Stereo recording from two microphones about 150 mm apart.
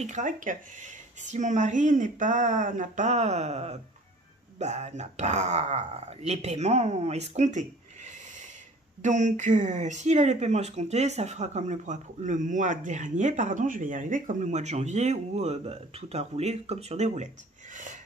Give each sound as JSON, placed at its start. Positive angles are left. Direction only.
{"t": 0.0, "sound": "speech", "side_deg": -55}